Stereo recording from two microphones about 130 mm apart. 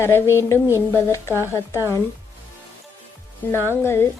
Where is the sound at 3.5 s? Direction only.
20° left (ahead or behind).